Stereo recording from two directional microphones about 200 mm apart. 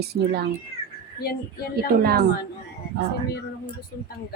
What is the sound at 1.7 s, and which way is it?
Speech, 50° right (ahead or behind).